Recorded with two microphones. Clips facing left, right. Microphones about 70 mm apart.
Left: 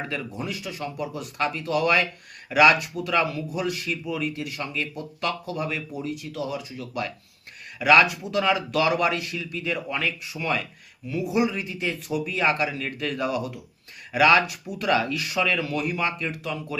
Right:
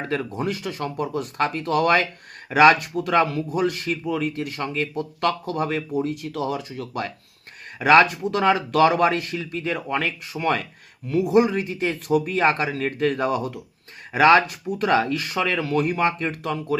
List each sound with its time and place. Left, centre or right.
0.1 s speech: right
7.8 s speech: right